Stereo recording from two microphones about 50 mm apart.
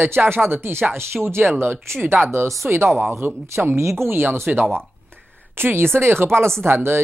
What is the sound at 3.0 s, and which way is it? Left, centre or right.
Speech, right.